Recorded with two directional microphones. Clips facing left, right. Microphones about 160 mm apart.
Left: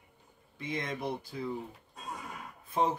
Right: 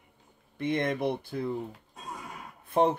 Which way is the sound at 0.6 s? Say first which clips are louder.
Right 8 dB; 60° right (ahead or behind).